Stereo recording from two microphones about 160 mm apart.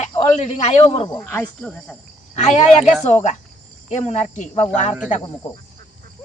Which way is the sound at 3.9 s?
40° left (ahead or behind).